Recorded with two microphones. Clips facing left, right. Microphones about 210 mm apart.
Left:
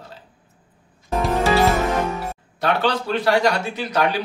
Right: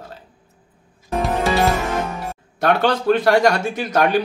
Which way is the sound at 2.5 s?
50° right (ahead or behind).